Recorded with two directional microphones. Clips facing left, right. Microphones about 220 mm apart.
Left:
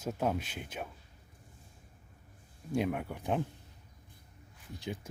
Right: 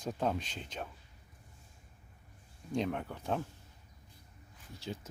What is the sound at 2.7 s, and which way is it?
Speech, 10° left (ahead or behind).